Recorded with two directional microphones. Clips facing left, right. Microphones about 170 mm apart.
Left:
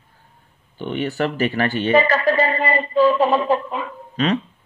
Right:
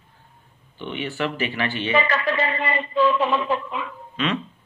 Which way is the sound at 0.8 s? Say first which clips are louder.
Left 5 dB; 45° left (ahead or behind).